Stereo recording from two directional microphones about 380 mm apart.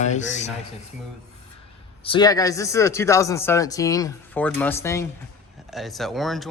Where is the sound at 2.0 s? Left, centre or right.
Centre.